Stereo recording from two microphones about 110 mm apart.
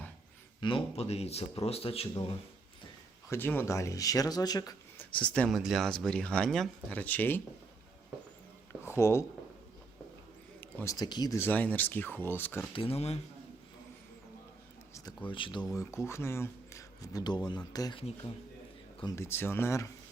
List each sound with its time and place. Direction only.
0.6 s speech: 45° left (ahead or behind)
0.9 s speech: 70° left (ahead or behind)
3.2 s speech: 20° left (ahead or behind); by 4.7 s 35° left (ahead or behind)
4.9 s speech: 10° left (ahead or behind)
5.5 s speech: centre (ahead or behind)
6.9 s speech: 15° left (ahead or behind)
8.8 s a sound: 25° left (ahead or behind)
10.8 s speech: 35° left (ahead or behind)
11.3 s speech: 15° left (ahead or behind)
12.7 s speech: 60° left (ahead or behind)
15.3 s speech: 50° left (ahead or behind)
15.7 s speech: 25° left (ahead or behind)
19.1 s speech: 25° left (ahead or behind)